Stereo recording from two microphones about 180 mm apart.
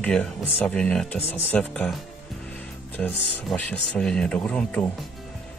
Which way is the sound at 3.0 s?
5° left (ahead or behind).